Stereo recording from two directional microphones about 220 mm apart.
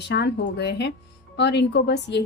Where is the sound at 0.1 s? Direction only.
50° left (ahead or behind).